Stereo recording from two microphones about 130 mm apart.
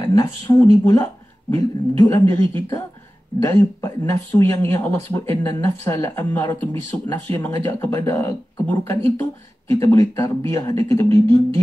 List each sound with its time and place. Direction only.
0.0 s speech: 25° left (ahead or behind)